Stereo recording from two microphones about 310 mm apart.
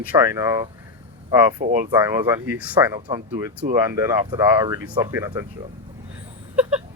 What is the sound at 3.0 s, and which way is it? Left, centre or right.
Speech, centre.